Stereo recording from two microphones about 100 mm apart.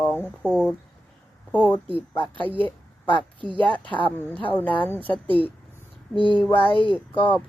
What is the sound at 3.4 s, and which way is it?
Speech, 55° right (ahead or behind).